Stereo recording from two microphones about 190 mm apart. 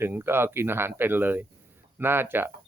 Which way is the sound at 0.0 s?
10° right (ahead or behind).